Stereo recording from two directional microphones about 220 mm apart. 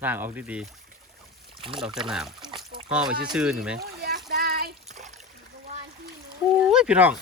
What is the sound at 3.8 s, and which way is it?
Splash, 45° right (ahead or behind).